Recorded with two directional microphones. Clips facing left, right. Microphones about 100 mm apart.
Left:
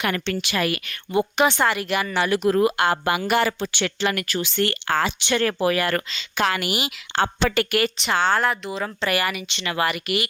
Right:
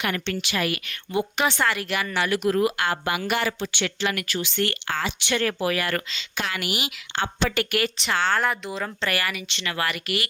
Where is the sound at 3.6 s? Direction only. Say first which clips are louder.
Left 3 dB; 45° left (ahead or behind).